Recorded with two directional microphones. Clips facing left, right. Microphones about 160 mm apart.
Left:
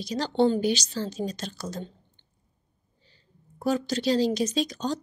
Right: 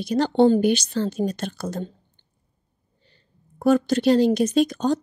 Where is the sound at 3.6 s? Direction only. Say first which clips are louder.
Right 8 dB; 55° right (ahead or behind).